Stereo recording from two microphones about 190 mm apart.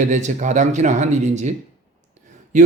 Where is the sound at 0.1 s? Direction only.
40° right (ahead or behind).